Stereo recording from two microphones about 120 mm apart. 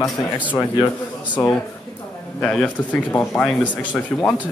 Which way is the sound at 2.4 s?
10° left (ahead or behind).